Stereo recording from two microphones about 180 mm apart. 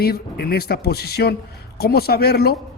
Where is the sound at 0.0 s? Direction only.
60° left (ahead or behind).